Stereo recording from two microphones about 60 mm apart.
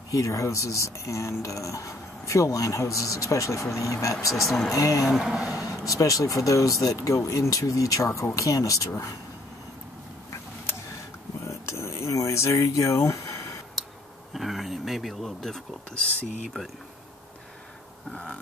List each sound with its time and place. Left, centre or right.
0.1 s speech: left
4.3 s speech: centre
4.7 s speech: left
5.0 s speech: centre
5.6 s speech: left
11.4 s a sound: left
13.8 s a sound: centre
14.3 s speech: centre
18.1 s a sound: centre